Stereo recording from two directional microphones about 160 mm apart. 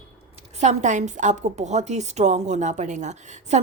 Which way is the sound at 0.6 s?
45° right (ahead or behind).